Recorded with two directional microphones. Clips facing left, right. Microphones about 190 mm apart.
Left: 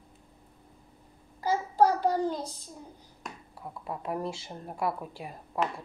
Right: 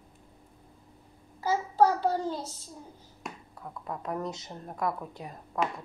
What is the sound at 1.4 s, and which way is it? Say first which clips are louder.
Child singing: even; 15° left (ahead or behind).